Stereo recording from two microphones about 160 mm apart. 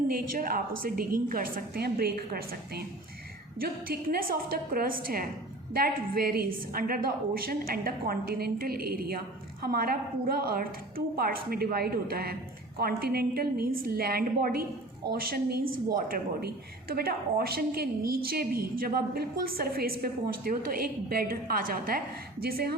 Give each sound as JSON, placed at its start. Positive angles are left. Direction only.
{"t": 0.1, "sound": "a woman's voice", "side_deg": -65}